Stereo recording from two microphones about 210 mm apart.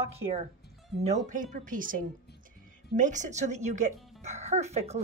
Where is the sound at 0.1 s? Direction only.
30° right (ahead or behind).